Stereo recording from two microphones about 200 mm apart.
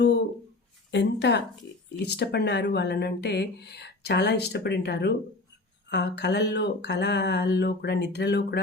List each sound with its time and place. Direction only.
0.9 s speech: 60° left (ahead or behind)